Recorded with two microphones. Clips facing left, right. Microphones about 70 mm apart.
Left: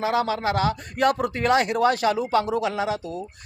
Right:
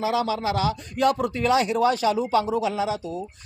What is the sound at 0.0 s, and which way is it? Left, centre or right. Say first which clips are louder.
A man's voice: left 1 dB; left.